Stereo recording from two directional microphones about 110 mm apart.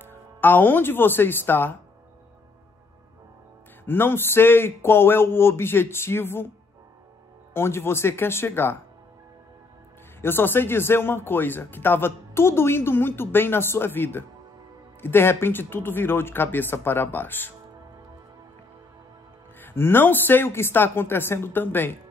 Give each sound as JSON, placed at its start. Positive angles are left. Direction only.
{"t": 0.0, "sound": "speech", "side_deg": 20}
{"t": 3.8, "sound": "speech", "side_deg": 20}
{"t": 7.5, "sound": "speech", "side_deg": 20}
{"t": 10.2, "sound": "speech", "side_deg": 20}
{"t": 19.6, "sound": "speech", "side_deg": 20}